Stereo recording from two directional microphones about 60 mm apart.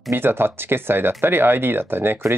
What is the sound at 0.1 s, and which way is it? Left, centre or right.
Speech, right.